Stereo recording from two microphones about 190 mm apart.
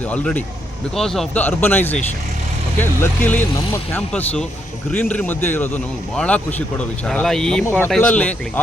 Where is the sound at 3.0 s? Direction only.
10° left (ahead or behind).